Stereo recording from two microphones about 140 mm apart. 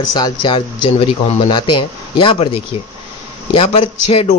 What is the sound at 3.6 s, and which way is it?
Speech, 40° left (ahead or behind).